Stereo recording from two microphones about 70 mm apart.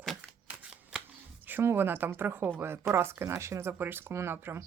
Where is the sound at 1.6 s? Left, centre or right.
Right.